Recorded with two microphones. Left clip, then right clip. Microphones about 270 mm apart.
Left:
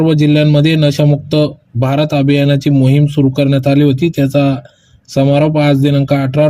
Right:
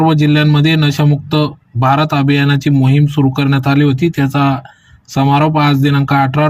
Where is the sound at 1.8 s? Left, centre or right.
Centre.